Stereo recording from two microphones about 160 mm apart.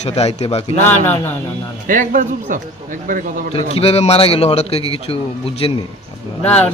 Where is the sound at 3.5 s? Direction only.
40° left (ahead or behind).